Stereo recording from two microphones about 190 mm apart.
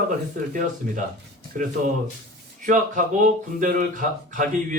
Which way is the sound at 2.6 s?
45° right (ahead or behind).